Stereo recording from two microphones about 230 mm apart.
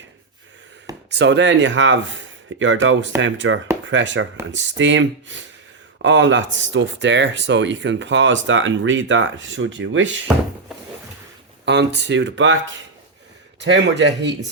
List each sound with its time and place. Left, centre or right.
1.1 s speech: right
11.6 s speech: right
13.6 s speech: right